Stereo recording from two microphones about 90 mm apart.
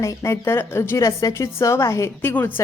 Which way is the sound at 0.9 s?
40° left (ahead or behind).